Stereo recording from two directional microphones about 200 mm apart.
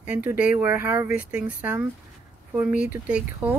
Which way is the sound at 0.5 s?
10° right (ahead or behind).